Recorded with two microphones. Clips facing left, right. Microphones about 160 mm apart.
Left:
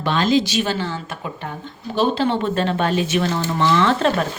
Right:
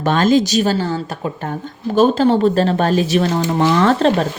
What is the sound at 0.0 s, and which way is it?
Speech, 45° right (ahead or behind).